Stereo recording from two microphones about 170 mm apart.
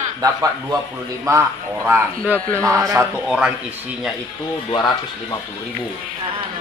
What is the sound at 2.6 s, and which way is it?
Speech, 20° right (ahead or behind).